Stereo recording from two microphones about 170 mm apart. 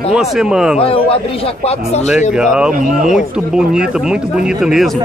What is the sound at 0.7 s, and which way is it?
A man's voice, 35° left (ahead or behind).